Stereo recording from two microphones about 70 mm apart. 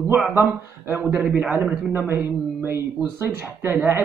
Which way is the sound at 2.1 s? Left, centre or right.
Right.